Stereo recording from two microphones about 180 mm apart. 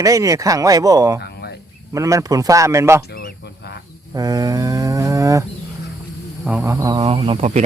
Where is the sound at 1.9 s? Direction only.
15° right (ahead or behind).